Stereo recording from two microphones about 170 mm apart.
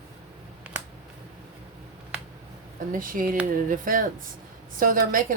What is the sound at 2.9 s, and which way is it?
Speech, 55° right (ahead or behind).